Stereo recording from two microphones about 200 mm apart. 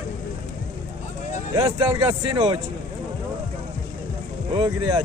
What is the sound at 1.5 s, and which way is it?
Speech, 20° right (ahead or behind).